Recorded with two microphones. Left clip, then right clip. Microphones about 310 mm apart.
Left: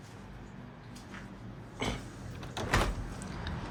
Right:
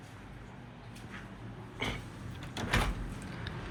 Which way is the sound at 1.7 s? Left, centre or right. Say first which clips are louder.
Left 1 dB; centre.